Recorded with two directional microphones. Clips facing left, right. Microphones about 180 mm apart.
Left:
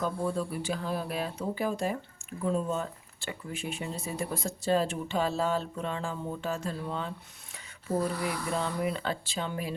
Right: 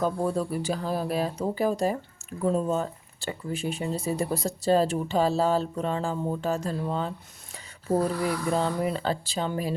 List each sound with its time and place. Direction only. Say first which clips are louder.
0.0 s speech: right 4 dB; 40° right (ahead or behind)
8.5 s speech: right 4 dB; 35° right (ahead or behind)